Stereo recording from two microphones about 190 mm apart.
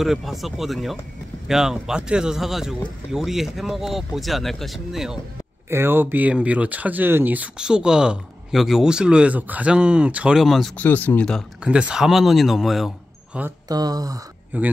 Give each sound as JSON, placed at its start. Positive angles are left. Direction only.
{"t": 0.0, "sound": "speech", "side_deg": 0}
{"t": 13.7, "sound": "speech", "side_deg": -20}